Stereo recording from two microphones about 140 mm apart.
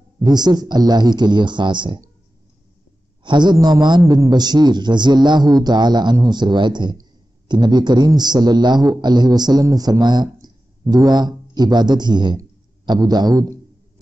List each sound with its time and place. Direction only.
0.2 s a man's voice: 30° right (ahead or behind)
3.3 s a man's voice: 30° right (ahead or behind)